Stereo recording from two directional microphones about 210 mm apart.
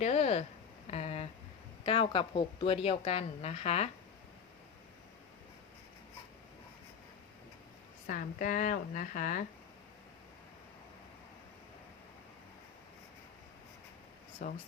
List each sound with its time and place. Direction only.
0.0 s speech: 30° left (ahead or behind)
0.9 s a sound: 30° left (ahead or behind)
1.8 s speech: 25° left (ahead or behind)
8.0 s a woman's voice: 40° left (ahead or behind)
14.4 s a woman's voice: 35° left (ahead or behind)